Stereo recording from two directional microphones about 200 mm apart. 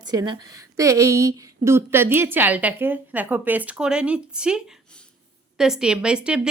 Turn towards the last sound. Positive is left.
turn(degrees=-5)  # may be behind; listen again after turning